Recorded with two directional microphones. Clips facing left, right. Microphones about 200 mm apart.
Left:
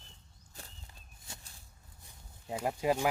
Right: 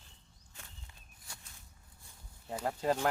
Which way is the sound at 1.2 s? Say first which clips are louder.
Left 3 dB; 25° left (ahead or behind).